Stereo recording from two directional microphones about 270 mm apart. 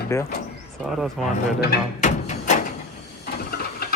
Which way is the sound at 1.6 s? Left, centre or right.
Left.